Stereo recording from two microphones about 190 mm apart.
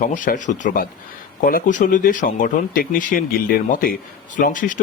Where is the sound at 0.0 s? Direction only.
45° left (ahead or behind).